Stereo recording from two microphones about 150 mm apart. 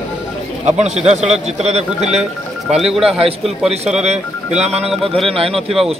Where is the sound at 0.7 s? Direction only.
50° right (ahead or behind).